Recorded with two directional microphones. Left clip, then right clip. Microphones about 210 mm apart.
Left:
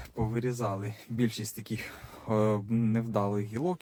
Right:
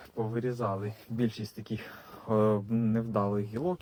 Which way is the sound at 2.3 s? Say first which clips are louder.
Right 1 dB; 35° left (ahead or behind).